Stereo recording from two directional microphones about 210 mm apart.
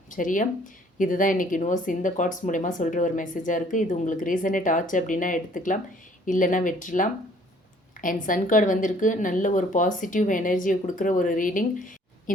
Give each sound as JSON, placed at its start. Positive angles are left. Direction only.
{"t": 0.1, "sound": "speech", "side_deg": 40}